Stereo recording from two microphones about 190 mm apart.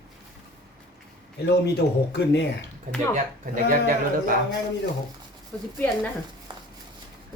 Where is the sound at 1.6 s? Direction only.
60° left (ahead or behind).